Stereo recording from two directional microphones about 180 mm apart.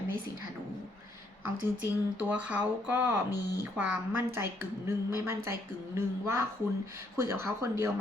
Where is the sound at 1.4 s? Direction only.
10° right (ahead or behind).